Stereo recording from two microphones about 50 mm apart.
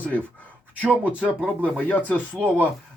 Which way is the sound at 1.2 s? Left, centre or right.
Right.